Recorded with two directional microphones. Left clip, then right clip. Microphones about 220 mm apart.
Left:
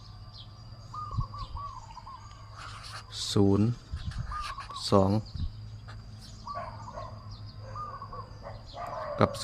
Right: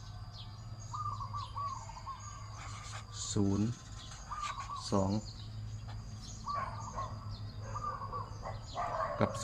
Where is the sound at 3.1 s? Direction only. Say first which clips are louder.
Left 10 dB; 50° left (ahead or behind).